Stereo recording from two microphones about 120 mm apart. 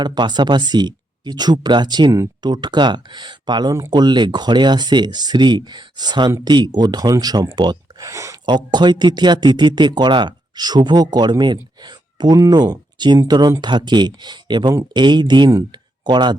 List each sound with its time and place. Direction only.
0.0 s speech: 40° right (ahead or behind)
8.4 s speech: 40° right (ahead or behind)
15.7 s a sound: 40° right (ahead or behind)